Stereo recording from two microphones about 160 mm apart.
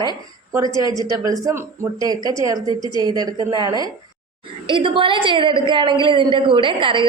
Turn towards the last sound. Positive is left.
turn(degrees=-30)  # may be behind; listen again after turning